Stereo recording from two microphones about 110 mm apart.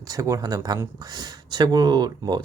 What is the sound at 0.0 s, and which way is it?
Speech, 30° right (ahead or behind).